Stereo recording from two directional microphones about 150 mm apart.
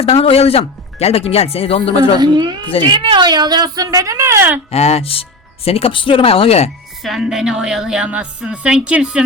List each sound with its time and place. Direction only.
0.0 s speech: 40° left (ahead or behind)
2.1 s speech: 30° right (ahead or behind)
4.7 s speech: 45° left (ahead or behind)
7.0 s a woman's voice: centre (ahead or behind)